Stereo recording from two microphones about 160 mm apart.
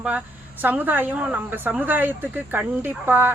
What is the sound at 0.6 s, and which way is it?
Speech, 10° right (ahead or behind).